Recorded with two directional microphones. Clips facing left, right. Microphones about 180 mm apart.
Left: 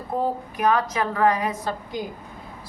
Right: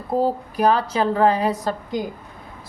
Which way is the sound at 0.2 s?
35° right (ahead or behind).